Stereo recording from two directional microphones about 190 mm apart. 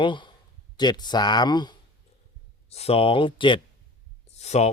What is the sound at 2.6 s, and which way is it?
Speech, 35° left (ahead or behind).